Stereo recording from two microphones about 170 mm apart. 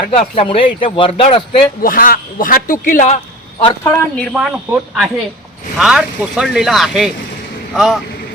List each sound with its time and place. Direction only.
0.1 s speech: 35° left (ahead or behind)
1.8 s a man's voice: 55° left (ahead or behind)
3.8 s speech: 15° left (ahead or behind)
4.3 s speech: 5° right (ahead or behind)